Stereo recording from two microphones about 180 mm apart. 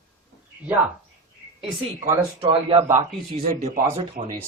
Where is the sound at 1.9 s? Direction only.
25° right (ahead or behind).